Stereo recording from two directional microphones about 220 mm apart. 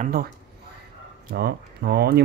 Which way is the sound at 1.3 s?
45° right (ahead or behind).